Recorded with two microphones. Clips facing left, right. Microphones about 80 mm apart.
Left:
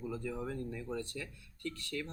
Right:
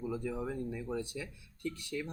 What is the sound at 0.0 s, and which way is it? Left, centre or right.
Speech, centre.